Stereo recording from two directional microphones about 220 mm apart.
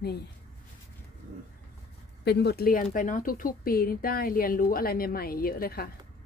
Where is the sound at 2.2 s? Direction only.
50° left (ahead or behind).